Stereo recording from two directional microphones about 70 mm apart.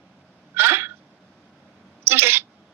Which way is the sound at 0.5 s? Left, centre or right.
Right.